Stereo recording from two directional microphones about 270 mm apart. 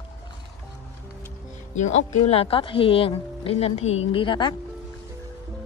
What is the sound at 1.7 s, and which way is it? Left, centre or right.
Speech, left.